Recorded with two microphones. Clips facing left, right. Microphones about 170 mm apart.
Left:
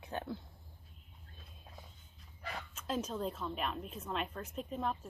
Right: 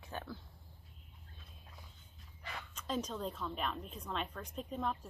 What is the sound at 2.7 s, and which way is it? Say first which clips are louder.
A woman's voice: left 1 dB; 5° left (ahead or behind).